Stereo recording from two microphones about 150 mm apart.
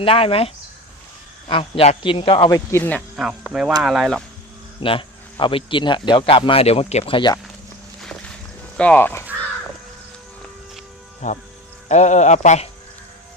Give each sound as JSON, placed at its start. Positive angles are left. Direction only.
{"t": 0.0, "sound": "speech", "side_deg": 40}
{"t": 2.5, "sound": "speech", "side_deg": 15}
{"t": 3.2, "sound": "speech", "side_deg": -5}
{"t": 4.8, "sound": "speech", "side_deg": 35}
{"t": 8.8, "sound": "speech", "side_deg": 10}
{"t": 11.2, "sound": "speech", "side_deg": 55}